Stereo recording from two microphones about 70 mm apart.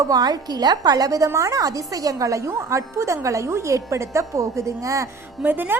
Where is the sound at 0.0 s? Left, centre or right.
Right.